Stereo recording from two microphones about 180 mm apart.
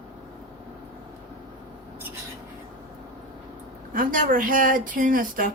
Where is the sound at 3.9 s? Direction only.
50° right (ahead or behind).